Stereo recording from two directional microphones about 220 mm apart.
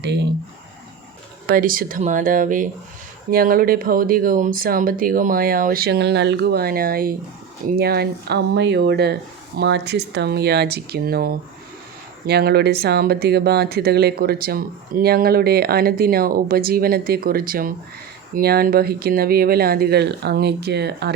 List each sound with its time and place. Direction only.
1.5 s speech: 40° right (ahead or behind)